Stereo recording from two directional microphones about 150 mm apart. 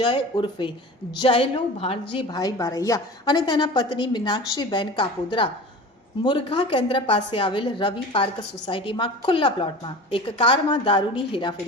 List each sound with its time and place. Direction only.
0.0 s a woman's voice: 35° left (ahead or behind)